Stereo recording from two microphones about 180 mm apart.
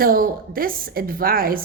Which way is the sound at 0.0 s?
55° right (ahead or behind).